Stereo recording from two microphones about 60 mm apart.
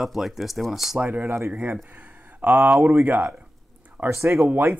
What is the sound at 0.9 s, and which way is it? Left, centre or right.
Speech, right.